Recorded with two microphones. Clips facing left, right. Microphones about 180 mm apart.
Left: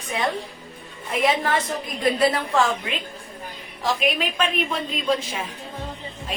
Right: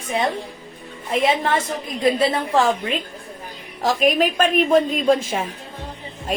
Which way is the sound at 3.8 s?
45° right (ahead or behind).